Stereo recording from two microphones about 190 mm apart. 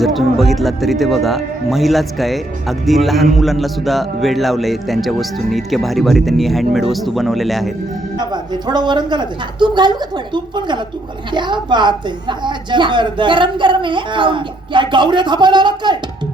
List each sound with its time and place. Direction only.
0.0 s speech: centre (ahead or behind)
8.2 s a woman's voice: 20° right (ahead or behind)